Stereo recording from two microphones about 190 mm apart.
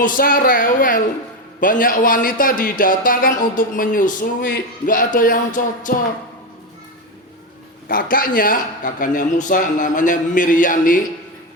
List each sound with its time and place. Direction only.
0.0 s a man's voice: 45° left (ahead or behind)
7.9 s a man's voice: 50° left (ahead or behind)